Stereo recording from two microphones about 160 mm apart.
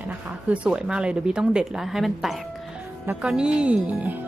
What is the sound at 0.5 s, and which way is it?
A woman's voice, 5° right (ahead or behind).